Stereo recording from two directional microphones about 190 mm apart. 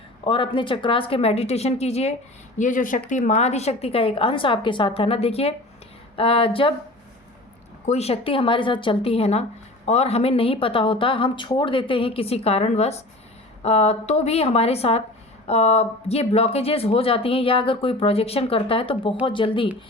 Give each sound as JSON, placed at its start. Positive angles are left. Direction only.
{"t": 0.3, "sound": "speech", "side_deg": 25}
{"t": 7.9, "sound": "speech", "side_deg": 35}